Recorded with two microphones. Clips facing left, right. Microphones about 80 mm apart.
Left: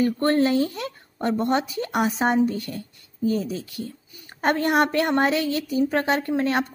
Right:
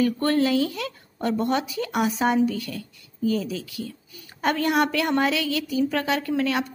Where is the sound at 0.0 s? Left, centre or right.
Left.